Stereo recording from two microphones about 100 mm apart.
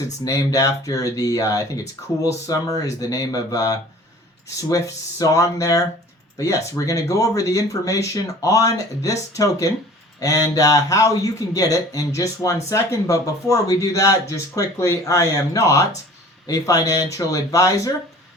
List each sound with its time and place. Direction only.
0.3 s a man's voice: 35° left (ahead or behind)
5.2 s a man's voice: 35° left (ahead or behind)